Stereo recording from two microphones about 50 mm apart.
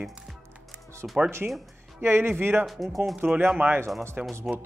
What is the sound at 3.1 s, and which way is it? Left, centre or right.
Speech, right.